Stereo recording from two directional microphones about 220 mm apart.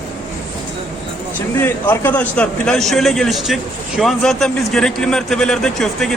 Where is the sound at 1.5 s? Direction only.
10° left (ahead or behind).